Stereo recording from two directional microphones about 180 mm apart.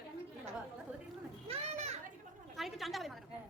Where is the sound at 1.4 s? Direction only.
35° right (ahead or behind).